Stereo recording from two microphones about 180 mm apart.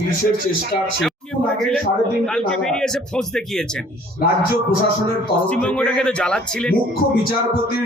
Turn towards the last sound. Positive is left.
turn(degrees=5)  # may be behind; listen again after turning